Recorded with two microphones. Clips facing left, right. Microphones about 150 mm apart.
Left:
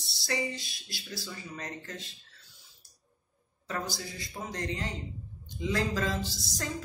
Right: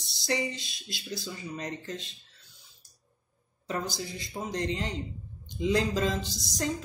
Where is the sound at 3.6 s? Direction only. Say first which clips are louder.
Right 3 dB; 20° right (ahead or behind).